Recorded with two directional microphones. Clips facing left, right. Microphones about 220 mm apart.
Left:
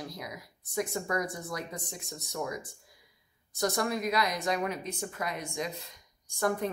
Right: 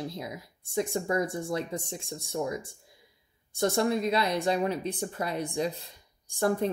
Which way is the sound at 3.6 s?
25° right (ahead or behind).